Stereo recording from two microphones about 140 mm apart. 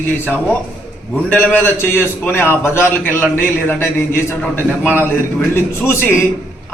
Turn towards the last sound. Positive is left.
turn(degrees=15)  # may be behind; listen again after turning